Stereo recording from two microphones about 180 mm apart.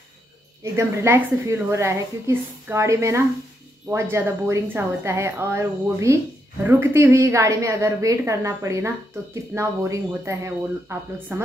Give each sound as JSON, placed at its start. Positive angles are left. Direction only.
{"t": 0.7, "sound": "a woman's voice", "side_deg": -15}